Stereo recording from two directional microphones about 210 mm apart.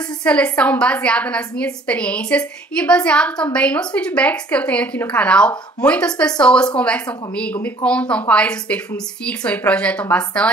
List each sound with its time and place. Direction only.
0.2 s a woman's voice: 5° left (ahead or behind)